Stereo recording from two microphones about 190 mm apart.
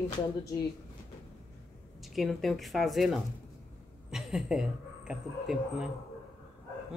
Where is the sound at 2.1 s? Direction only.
Centre (ahead or behind).